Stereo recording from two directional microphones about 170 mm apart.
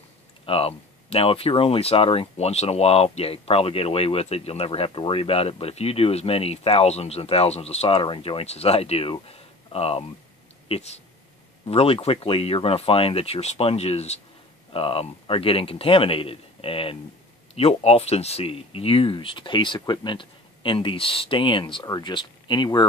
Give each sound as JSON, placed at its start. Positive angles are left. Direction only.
{"t": 0.5, "sound": "speech", "side_deg": 35}